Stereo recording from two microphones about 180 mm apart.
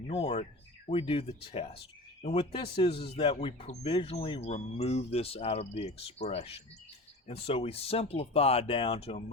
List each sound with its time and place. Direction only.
0.1 s speech: 35° left (ahead or behind)